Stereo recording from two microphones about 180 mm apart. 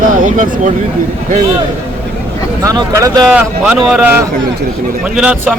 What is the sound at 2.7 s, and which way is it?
Speech, 20° right (ahead or behind).